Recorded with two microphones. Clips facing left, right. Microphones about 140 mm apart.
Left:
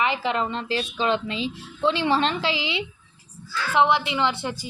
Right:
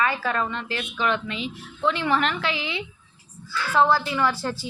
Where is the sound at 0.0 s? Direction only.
20° left (ahead or behind).